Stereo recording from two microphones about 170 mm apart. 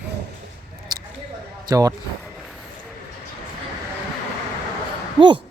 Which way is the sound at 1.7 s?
20° right (ahead or behind).